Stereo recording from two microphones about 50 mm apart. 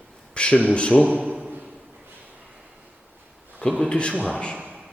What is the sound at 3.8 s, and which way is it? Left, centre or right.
Speech, left.